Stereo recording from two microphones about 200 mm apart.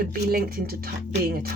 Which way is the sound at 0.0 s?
50° right (ahead or behind).